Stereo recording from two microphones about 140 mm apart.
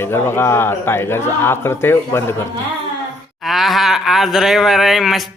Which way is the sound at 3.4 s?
Centre (ahead or behind).